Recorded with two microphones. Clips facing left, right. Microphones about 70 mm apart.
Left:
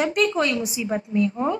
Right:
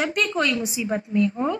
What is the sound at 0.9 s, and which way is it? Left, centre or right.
Speech, centre.